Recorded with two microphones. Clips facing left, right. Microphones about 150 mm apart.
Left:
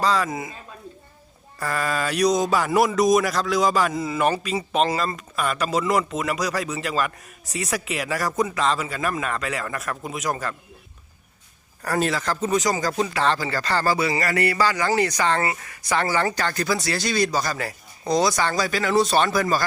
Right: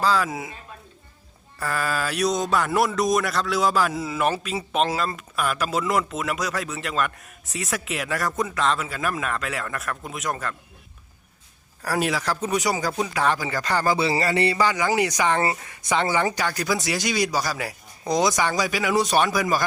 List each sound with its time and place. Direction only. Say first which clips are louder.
0.0 s speech: even; centre (ahead or behind)
1.5 s speech: left 1 dB; centre (ahead or behind)
11.8 s speech: left 1 dB; 10° right (ahead or behind)